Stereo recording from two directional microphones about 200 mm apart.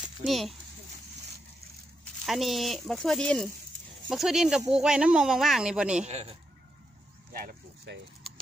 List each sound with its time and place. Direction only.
0.0 s speech: centre (ahead or behind)
2.2 s speech: centre (ahead or behind)
6.0 s speech: 30° right (ahead or behind)
7.3 s a sound: 50° right (ahead or behind)